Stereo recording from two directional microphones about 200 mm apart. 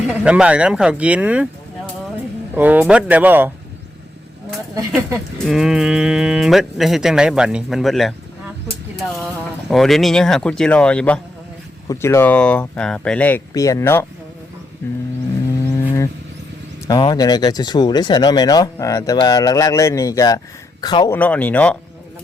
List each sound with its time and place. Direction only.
0.1 s speech: 5° right (ahead or behind)
2.6 s speech: 10° right (ahead or behind)
5.4 s speech: centre (ahead or behind)
9.2 s speech: centre (ahead or behind)
15.7 s a sound: 15° left (ahead or behind)
16.8 s speech: 20° left (ahead or behind)
21.2 s speech: 10° left (ahead or behind)